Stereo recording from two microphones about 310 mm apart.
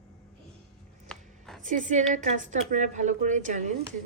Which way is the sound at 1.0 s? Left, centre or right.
Centre.